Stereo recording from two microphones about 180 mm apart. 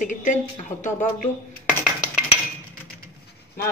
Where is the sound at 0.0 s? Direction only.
45° left (ahead or behind).